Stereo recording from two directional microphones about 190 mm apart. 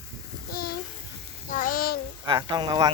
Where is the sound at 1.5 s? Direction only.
45° left (ahead or behind).